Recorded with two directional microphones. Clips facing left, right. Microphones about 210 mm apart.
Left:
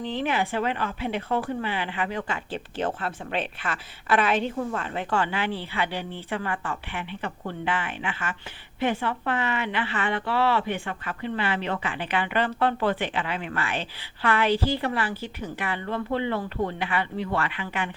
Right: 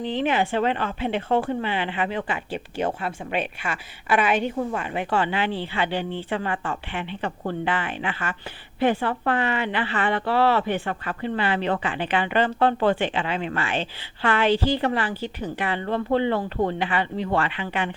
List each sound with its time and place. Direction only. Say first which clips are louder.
0.0 s speech: right 3 dB; 20° right (ahead or behind)
4.4 s speech: right 2 dB; 10° right (ahead or behind); by 17.9 s 25° right (ahead or behind)